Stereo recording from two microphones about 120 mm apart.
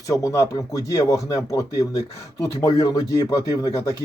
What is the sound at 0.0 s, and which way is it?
Speech, 25° left (ahead or behind).